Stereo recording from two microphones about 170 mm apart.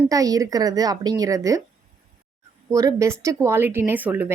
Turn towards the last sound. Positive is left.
turn(degrees=-10)  # may be behind; listen again after turning